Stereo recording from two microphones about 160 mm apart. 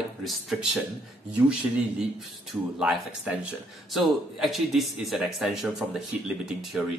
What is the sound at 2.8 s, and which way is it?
A man's voice, 5° right (ahead or behind).